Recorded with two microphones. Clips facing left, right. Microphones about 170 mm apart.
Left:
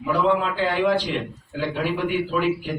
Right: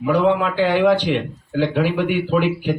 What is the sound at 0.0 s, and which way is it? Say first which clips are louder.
Speech: right 4 dB; 75° right (ahead or behind).